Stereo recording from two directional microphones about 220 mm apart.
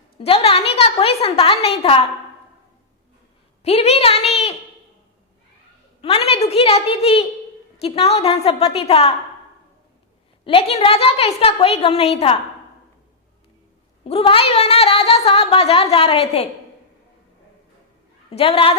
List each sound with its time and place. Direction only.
0.2 s a woman's voice: 25° left (ahead or behind)
3.6 s a woman's voice: 30° left (ahead or behind)
6.0 s a woman's voice: 25° left (ahead or behind)
10.4 s a woman's voice: 25° left (ahead or behind)
14.0 s a woman's voice: 25° left (ahead or behind)
18.3 s a woman's voice: 25° left (ahead or behind)